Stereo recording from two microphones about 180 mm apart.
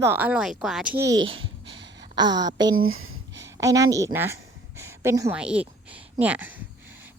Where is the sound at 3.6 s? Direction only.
20° right (ahead or behind).